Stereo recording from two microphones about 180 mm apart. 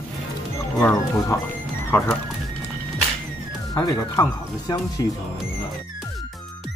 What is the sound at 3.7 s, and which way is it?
Speech, 20° left (ahead or behind).